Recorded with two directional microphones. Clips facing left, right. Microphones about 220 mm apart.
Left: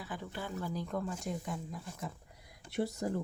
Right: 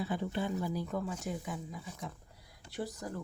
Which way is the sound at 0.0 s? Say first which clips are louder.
Right 7 dB; 25° right (ahead or behind).